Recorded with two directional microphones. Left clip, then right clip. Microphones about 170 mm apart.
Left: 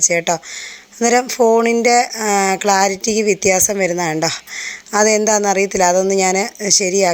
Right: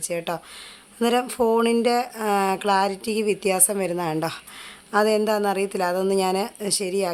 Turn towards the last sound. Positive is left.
turn(degrees=20)  # may be behind; listen again after turning